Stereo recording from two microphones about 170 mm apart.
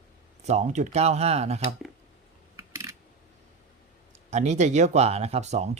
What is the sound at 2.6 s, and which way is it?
Coin, 15° right (ahead or behind).